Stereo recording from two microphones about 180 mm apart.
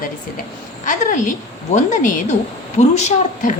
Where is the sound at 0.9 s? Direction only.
45° left (ahead or behind).